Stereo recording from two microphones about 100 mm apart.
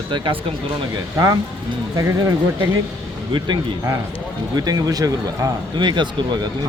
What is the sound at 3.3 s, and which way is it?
Speech, 50° right (ahead or behind).